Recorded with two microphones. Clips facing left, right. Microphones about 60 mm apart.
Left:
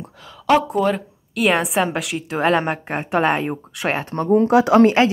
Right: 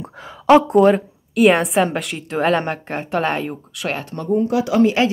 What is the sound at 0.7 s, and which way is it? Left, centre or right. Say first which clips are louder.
Speech: right 7 dB; centre.